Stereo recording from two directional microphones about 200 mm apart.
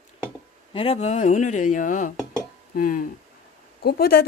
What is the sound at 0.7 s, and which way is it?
Speech, 30° left (ahead or behind).